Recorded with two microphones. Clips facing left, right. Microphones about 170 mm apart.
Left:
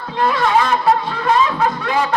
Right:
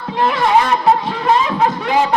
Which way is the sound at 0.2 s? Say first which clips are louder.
Right 1 dB; 20° right (ahead or behind).